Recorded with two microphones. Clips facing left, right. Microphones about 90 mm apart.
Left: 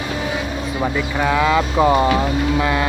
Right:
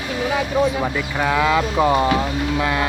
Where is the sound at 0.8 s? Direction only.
Centre (ahead or behind).